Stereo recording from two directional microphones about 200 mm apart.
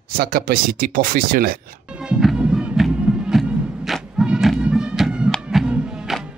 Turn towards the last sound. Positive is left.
turn(degrees=-5)  # may be behind; listen again after turning